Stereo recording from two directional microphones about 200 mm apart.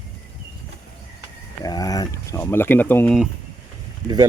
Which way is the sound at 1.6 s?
20° left (ahead or behind).